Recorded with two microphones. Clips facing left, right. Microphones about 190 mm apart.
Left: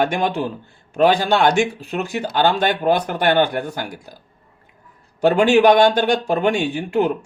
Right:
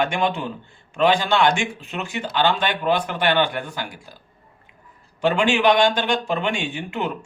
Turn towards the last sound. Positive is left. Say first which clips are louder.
# left 8 dB
turn(degrees=40)  # may be behind; listen again after turning